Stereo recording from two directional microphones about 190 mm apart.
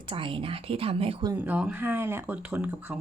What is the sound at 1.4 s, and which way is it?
Speech, 5° right (ahead or behind).